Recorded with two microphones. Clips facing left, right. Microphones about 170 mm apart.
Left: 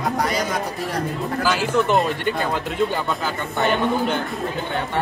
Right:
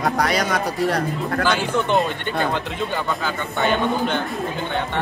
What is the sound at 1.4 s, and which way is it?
Speech, 5° left (ahead or behind).